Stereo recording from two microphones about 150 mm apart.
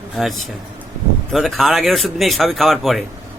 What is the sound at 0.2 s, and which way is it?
Speech, centre (ahead or behind).